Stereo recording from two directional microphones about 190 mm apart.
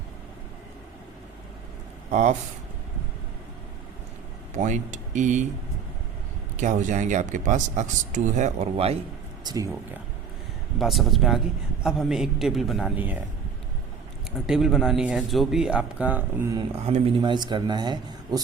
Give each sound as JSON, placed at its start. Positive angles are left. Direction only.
{"t": 2.0, "sound": "speech", "side_deg": -35}
{"t": 4.5, "sound": "speech", "side_deg": -40}
{"t": 6.6, "sound": "speech", "side_deg": -40}
{"t": 10.8, "sound": "speech", "side_deg": 0}
{"t": 14.4, "sound": "speech", "side_deg": -5}
{"t": 16.7, "sound": "speech", "side_deg": -35}